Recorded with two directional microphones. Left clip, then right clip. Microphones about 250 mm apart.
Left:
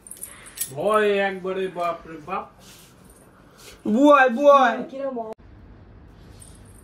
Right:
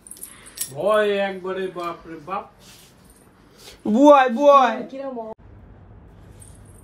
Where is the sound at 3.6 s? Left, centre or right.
Right.